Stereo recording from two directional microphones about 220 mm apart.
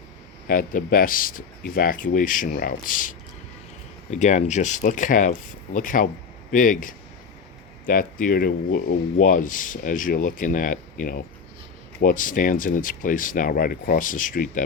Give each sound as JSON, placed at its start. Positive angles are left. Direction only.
{"t": 0.4, "sound": "speech", "side_deg": 40}
{"t": 12.0, "sound": "speech", "side_deg": 35}